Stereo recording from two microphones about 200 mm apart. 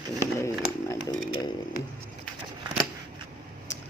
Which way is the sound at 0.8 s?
20° left (ahead or behind).